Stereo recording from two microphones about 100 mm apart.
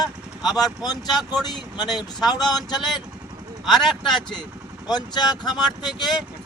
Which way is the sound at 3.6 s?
Centre (ahead or behind).